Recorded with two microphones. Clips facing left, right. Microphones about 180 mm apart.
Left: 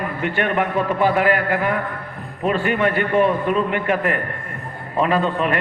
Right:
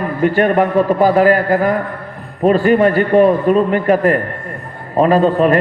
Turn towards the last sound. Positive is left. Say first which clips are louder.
# right 8 dB
turn(degrees=-40)  # may be behind; listen again after turning